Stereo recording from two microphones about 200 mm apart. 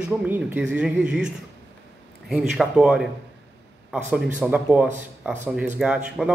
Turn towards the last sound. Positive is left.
turn(degrees=-5)  # may be behind; listen again after turning